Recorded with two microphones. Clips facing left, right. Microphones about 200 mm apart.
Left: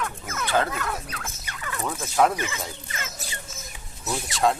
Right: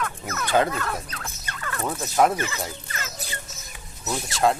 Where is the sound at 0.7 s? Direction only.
10° left (ahead or behind).